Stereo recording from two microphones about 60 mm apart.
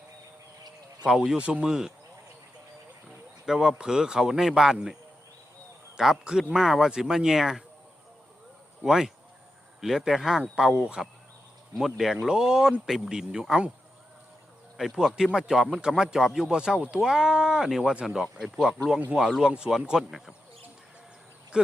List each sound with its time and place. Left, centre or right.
1.4 s speech: centre
3.4 s speech: centre
6.0 s speech: centre
8.8 s speech: centre
14.8 s speech: centre
21.5 s speech: centre